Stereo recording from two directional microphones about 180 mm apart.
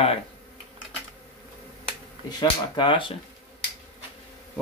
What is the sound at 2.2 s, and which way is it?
Speech, 25° left (ahead or behind).